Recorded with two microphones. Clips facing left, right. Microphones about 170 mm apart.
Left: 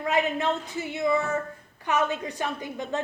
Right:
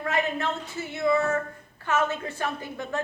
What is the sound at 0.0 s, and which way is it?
A woman's voice, 15° left (ahead or behind).